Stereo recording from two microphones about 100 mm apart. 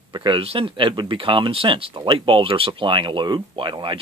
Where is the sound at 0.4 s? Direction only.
70° right (ahead or behind).